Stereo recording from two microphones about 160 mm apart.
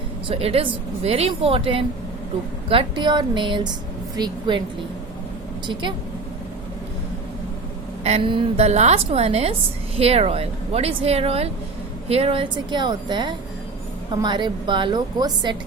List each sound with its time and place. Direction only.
0.3 s a woman's voice: 40° right (ahead or behind)
8.0 s a woman's voice: 35° right (ahead or behind)